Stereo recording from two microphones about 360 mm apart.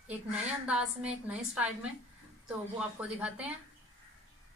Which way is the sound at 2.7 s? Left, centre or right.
Centre.